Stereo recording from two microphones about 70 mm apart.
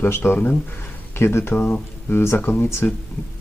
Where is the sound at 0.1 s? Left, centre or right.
Left.